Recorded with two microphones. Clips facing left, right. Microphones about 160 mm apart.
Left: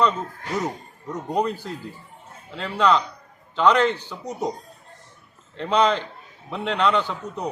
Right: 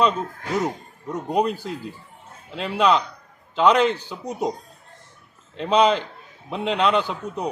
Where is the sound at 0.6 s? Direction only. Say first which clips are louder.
Right 2 dB; 10° right (ahead or behind).